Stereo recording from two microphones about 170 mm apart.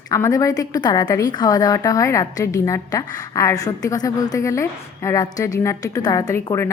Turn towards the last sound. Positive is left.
turn(degrees=15)  # may be behind; listen again after turning